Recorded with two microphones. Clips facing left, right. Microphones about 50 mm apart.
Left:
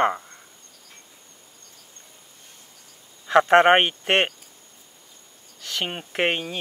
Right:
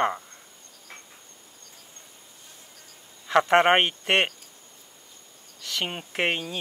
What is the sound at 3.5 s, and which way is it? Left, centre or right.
Speech, centre.